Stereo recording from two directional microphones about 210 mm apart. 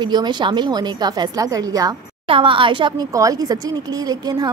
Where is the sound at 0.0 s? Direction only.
20° right (ahead or behind).